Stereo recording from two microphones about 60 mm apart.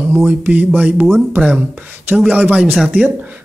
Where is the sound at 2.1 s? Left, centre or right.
Right.